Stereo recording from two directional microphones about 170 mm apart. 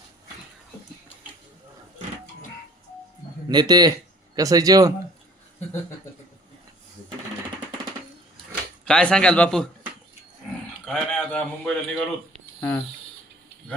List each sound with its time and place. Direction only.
3.5 s a man's voice: 25° right (ahead or behind)
8.8 s a man's voice: 5° left (ahead or behind)
10.8 s a man's voice: centre (ahead or behind)